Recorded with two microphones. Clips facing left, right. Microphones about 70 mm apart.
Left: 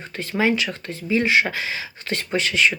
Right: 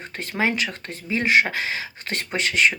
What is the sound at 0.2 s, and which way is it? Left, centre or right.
Speech, right.